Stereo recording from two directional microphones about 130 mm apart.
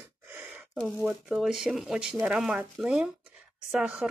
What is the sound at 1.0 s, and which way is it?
Speech, centre (ahead or behind).